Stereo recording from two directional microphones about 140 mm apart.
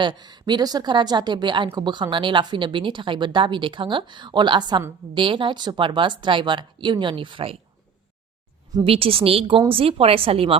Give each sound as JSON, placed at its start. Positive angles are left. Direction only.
{"t": 0.0, "sound": "speech", "side_deg": -30}
{"t": 8.8, "sound": "speech", "side_deg": -40}